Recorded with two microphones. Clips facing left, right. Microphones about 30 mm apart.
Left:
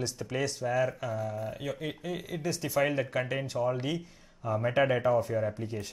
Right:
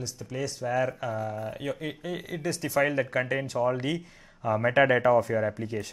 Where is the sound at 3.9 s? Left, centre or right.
Right.